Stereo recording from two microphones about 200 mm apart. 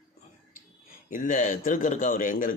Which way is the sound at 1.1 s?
40° left (ahead or behind).